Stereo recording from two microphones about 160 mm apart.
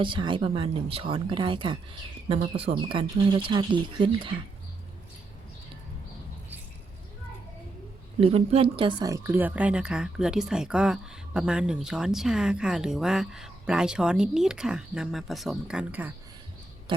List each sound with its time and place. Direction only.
0.0 s speech: 30° right (ahead or behind)
8.2 s speech: 40° right (ahead or behind); by 16.1 s 10° right (ahead or behind)